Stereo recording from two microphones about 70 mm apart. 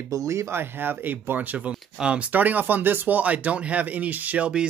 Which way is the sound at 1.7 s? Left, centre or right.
Centre.